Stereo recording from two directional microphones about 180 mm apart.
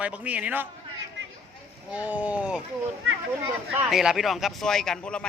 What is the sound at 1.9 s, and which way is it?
Speech, 10° right (ahead or behind).